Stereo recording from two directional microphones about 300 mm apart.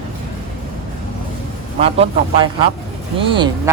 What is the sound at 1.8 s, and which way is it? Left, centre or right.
Speech, centre.